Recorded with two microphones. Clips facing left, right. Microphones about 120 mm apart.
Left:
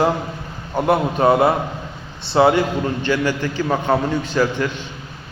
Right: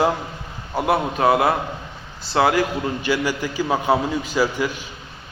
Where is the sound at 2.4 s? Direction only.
25° left (ahead or behind).